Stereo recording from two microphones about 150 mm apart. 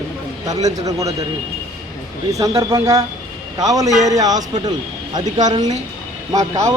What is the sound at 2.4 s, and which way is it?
Speech, 20° right (ahead or behind).